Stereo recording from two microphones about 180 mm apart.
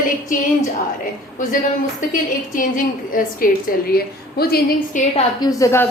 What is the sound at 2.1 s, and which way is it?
A woman's voice, 45° left (ahead or behind).